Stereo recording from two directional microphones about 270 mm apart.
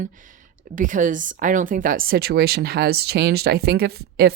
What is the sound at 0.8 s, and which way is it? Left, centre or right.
Speech, right.